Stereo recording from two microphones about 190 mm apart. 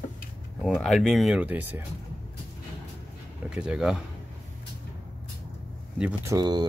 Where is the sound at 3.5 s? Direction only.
5° right (ahead or behind).